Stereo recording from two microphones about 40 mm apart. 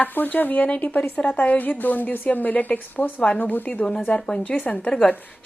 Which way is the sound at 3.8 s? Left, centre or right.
Left.